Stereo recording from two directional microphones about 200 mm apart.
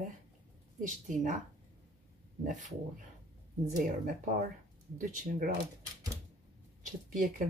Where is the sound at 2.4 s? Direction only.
40° right (ahead or behind).